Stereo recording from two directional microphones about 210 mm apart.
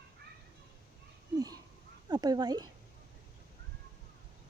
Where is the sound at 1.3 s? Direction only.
15° right (ahead or behind).